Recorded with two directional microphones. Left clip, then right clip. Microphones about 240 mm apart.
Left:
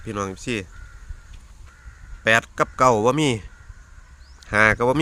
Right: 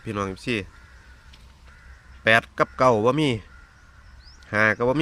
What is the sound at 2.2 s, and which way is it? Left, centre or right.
Speech, centre.